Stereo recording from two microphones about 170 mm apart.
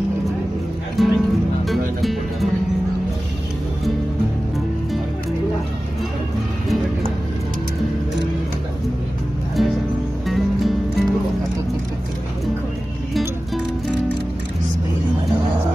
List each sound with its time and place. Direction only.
1.0 s music: centre (ahead or behind)
9.6 s music: centre (ahead or behind)